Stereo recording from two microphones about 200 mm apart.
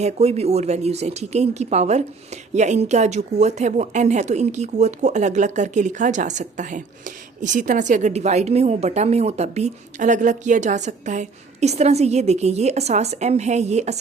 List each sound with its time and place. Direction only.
0.0 s speech: 30° right (ahead or behind)